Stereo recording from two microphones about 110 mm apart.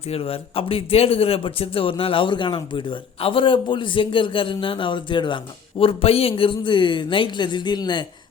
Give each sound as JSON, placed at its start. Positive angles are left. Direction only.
{"t": 0.1, "sound": "speech", "side_deg": 60}
{"t": 5.8, "sound": "speech", "side_deg": 60}